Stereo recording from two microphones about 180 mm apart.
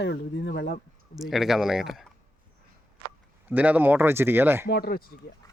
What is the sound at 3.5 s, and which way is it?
Speech, 10° right (ahead or behind).